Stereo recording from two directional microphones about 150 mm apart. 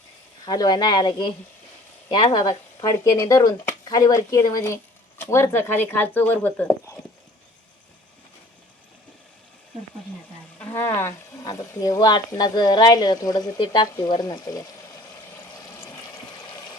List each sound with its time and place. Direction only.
0.4 s speech: 25° left (ahead or behind); by 6.7 s 10° left (ahead or behind)
10.6 s speech: 15° left (ahead or behind)
13.9 s a sound: 25° left (ahead or behind)
16.5 s water: 30° left (ahead or behind)